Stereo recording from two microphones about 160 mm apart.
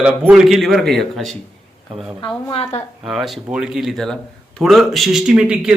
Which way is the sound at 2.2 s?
30° left (ahead or behind).